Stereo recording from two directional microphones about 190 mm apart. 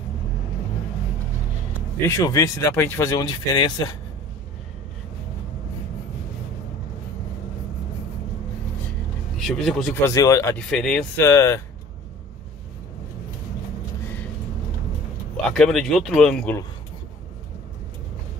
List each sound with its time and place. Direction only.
2.0 s speech: 15° left (ahead or behind)
9.5 s speech: centre (ahead or behind)
10.0 s speech: 15° left (ahead or behind)
10.7 s speech: 5° left (ahead or behind)
11.2 s speech: 15° left (ahead or behind)
15.5 s speech: centre (ahead or behind)